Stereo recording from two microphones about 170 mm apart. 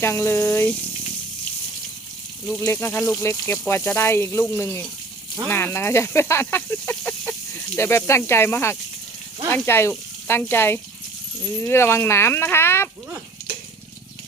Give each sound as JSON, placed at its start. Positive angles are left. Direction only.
{"t": 0.0, "sound": "speech", "side_deg": 15}
{"t": 2.6, "sound": "speech", "side_deg": 15}